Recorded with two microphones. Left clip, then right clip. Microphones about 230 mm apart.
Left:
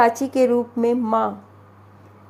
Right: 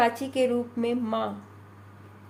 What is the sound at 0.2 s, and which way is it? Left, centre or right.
Speech, left.